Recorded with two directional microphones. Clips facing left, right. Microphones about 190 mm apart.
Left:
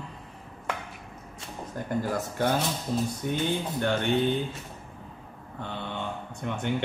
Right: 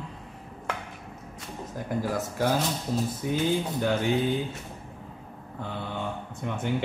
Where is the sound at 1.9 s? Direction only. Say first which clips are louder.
Even; centre (ahead or behind).